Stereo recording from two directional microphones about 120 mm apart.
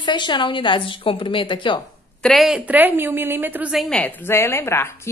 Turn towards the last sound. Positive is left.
turn(degrees=20)  # may be behind; listen again after turning